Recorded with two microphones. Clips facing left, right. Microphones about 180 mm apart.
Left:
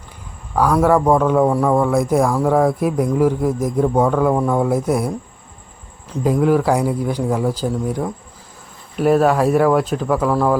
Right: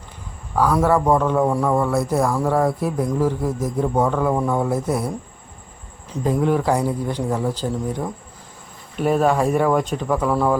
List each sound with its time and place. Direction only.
0.7 s a man's voice: 10° left (ahead or behind)
6.1 s a man's voice: 5° left (ahead or behind)